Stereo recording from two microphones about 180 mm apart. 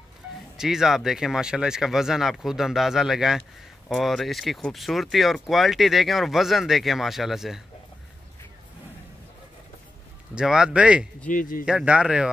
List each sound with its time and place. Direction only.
0.6 s speech: centre (ahead or behind)
10.3 s speech: 5° right (ahead or behind)
11.2 s speech: 50° left (ahead or behind)
11.6 s speech: 5° right (ahead or behind)